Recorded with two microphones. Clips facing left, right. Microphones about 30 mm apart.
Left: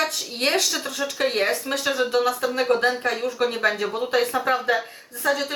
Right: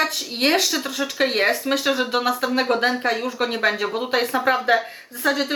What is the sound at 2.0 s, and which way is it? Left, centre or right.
A woman's voice, right.